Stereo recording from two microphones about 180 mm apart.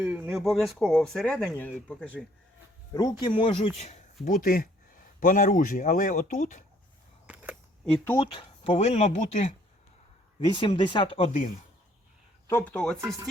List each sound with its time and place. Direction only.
0.0 s speech: 10° right (ahead or behind); by 2.0 s 10° left (ahead or behind)
2.9 s speech: 25° left (ahead or behind); by 6.7 s 45° left (ahead or behind)
7.9 s speech: 5° left (ahead or behind)
8.1 s speech: 30° left (ahead or behind)
10.4 s speech: 25° left (ahead or behind)
12.5 s speech: 10° left (ahead or behind)